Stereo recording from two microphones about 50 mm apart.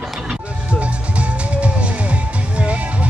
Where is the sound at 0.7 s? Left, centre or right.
Right.